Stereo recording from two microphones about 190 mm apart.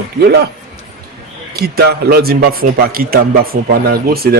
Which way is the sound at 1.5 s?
55° right (ahead or behind).